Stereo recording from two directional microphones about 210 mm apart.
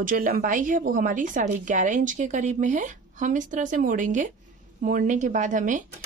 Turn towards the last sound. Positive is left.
turn(degrees=-35)  # may be behind; listen again after turning